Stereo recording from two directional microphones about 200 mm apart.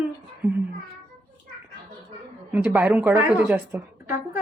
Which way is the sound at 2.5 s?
5° right (ahead or behind).